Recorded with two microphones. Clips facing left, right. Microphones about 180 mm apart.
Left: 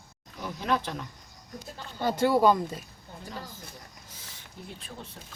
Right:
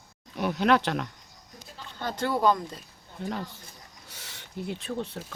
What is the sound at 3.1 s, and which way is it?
Speech, 70° right (ahead or behind).